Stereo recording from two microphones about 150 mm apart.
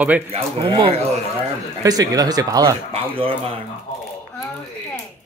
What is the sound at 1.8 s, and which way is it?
Speech, 25° right (ahead or behind).